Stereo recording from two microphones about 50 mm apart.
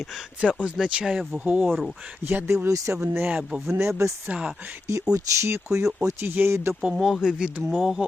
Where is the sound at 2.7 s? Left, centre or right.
Right.